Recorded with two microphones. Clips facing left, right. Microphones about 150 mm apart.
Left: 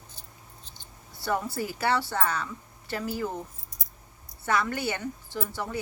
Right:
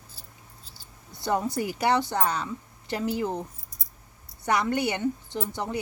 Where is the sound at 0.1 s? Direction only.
5° right (ahead or behind).